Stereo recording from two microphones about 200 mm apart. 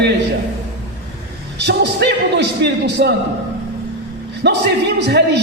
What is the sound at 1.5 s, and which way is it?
A man's voice, 60° right (ahead or behind).